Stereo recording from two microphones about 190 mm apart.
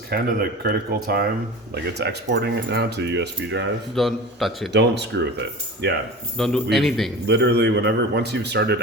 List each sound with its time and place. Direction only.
0.1 s speech: 55° right (ahead or behind)
3.9 s a man's voice: centre (ahead or behind)
4.7 s speech: 65° right (ahead or behind)
6.3 s a man's voice: centre (ahead or behind)
7.3 s speech: 65° right (ahead or behind)